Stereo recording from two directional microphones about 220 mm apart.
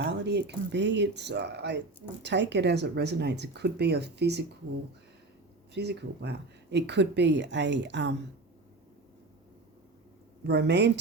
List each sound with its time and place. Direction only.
0.0 s speech: 50° right (ahead or behind)
5.7 s speech: 50° right (ahead or behind)
10.4 s speech: 50° right (ahead or behind)